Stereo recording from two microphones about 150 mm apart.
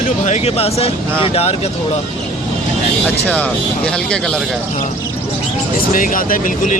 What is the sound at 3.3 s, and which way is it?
Speech, 10° left (ahead or behind).